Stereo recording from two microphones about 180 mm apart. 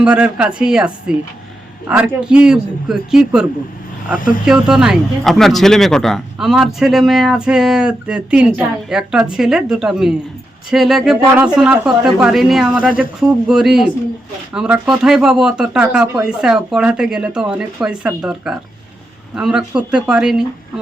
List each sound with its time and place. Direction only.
0.0 s speech: 5° right (ahead or behind)
4.4 s speech: 5° right (ahead or behind)